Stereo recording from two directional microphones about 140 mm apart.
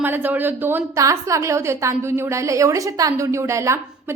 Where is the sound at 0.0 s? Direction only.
15° right (ahead or behind).